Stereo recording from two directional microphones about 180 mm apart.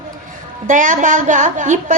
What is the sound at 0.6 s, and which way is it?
A woman's voice, 45° right (ahead or behind).